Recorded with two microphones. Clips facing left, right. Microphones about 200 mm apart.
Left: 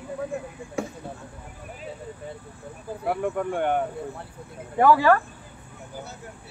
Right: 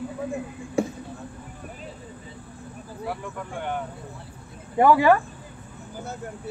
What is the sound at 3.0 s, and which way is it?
Speech, 55° left (ahead or behind).